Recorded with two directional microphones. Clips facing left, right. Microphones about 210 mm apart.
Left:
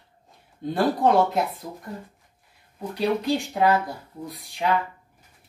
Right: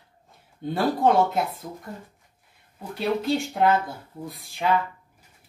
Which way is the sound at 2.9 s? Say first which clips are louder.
Left 1 dB; centre (ahead or behind).